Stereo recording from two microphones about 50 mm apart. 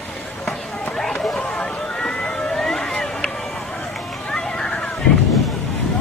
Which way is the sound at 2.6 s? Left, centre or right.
Centre.